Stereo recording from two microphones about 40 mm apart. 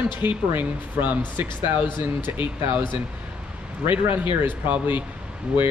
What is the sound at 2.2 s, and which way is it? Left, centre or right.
Speech, right.